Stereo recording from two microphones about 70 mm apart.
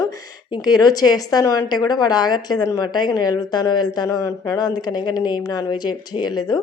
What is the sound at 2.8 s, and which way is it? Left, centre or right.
A man's voice, left.